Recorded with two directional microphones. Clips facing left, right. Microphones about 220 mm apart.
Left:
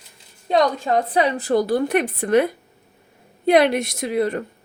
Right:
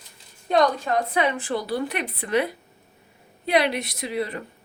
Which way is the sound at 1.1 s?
35° left (ahead or behind).